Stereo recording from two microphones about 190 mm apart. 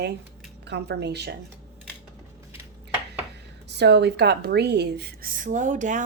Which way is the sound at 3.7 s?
65° right (ahead or behind).